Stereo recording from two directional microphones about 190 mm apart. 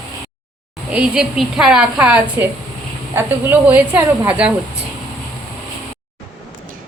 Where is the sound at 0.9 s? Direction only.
5° right (ahead or behind).